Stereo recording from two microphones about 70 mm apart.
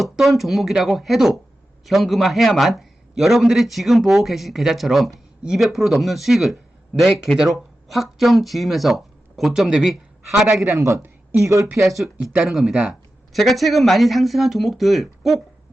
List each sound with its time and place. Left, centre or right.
0.0 s a man's voice: centre
10.7 s a man's voice: right
11.6 s a man's voice: centre
12.7 s speech: centre
13.3 s a man's voice: centre